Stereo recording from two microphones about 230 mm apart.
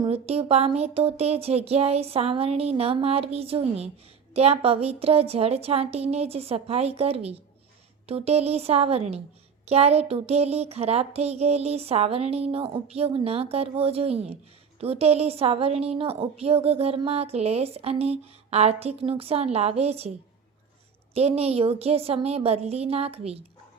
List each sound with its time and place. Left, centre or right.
0.0 s a woman's voice: right